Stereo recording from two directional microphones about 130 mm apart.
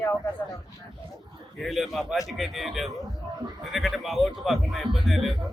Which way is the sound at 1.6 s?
Centre (ahead or behind).